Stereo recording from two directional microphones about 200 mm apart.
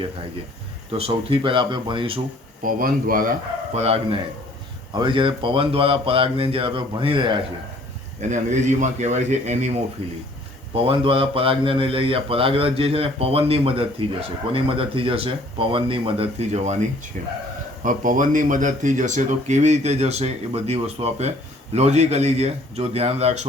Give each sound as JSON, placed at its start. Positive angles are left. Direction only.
{"t": 0.9, "sound": "speech", "side_deg": -30}
{"t": 2.6, "sound": "speech", "side_deg": -45}
{"t": 8.3, "sound": "speech", "side_deg": -35}